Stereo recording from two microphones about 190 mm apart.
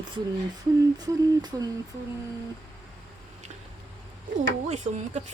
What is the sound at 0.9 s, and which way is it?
Speech, 20° right (ahead or behind).